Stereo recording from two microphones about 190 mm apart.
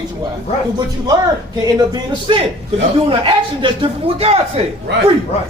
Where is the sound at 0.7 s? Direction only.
20° right (ahead or behind).